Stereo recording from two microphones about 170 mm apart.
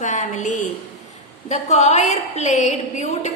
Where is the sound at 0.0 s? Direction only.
45° left (ahead or behind).